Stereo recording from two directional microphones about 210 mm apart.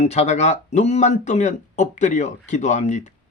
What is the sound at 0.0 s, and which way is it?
Speech, 30° left (ahead or behind).